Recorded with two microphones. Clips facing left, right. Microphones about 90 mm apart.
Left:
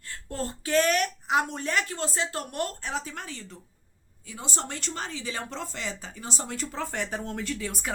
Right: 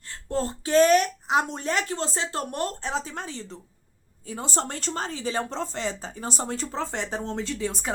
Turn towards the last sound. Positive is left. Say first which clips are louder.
# right 3 dB
turn(degrees=-25)  # may be behind; listen again after turning